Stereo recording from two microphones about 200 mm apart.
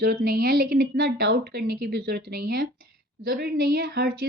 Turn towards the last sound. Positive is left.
turn(degrees=-50)  # may be behind; listen again after turning